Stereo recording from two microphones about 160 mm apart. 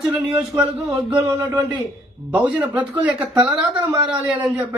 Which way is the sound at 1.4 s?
25° right (ahead or behind).